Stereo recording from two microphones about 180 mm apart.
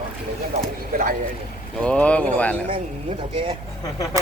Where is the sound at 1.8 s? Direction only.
5° left (ahead or behind).